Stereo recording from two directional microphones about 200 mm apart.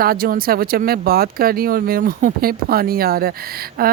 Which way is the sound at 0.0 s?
45° right (ahead or behind).